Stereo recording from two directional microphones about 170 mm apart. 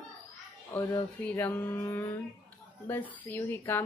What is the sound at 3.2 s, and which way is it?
Speech, 10° left (ahead or behind).